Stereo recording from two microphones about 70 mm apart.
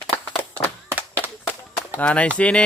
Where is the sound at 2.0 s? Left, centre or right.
Centre.